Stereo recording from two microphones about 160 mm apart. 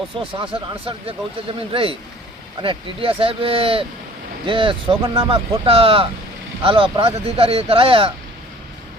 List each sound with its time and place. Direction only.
0.2 s speech: 35° right (ahead or behind)